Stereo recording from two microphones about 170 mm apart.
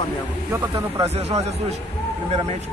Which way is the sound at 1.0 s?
40° right (ahead or behind).